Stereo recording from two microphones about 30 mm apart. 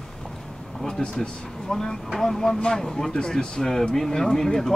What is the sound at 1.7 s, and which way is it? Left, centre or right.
Speech, centre.